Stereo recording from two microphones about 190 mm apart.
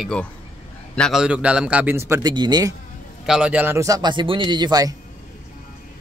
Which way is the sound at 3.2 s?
5° right (ahead or behind).